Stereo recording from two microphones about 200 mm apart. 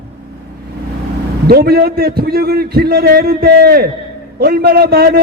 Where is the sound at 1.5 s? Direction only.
50° right (ahead or behind).